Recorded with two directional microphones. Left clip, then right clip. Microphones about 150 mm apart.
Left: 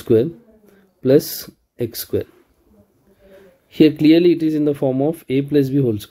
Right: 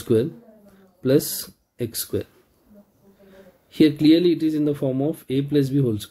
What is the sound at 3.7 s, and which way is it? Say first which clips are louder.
Speech: left 4 dB; 20° left (ahead or behind).